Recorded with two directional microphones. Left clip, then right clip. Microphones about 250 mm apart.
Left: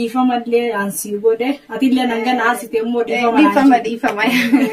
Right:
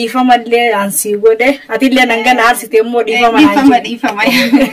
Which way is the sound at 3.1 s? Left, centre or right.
Centre.